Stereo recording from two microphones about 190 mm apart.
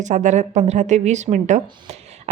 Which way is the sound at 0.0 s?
40° right (ahead or behind).